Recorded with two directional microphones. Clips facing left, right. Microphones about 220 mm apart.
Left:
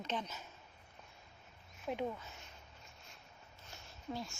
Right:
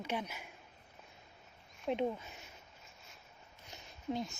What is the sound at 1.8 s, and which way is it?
Speech, 20° right (ahead or behind).